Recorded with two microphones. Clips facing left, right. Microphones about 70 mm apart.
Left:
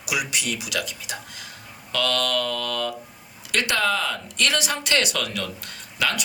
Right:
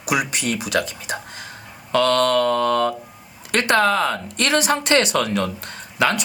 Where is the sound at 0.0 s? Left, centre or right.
Right.